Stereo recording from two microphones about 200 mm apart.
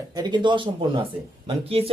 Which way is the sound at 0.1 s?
20° right (ahead or behind).